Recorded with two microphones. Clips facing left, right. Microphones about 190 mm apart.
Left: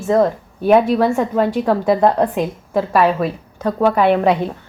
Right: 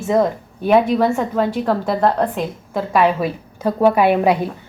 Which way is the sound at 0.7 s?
5° left (ahead or behind).